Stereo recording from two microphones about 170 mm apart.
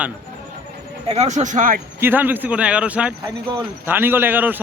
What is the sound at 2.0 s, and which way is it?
Speech, 10° right (ahead or behind).